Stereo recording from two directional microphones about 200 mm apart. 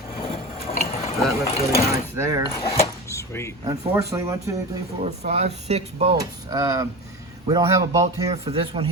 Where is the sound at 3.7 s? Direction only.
15° right (ahead or behind).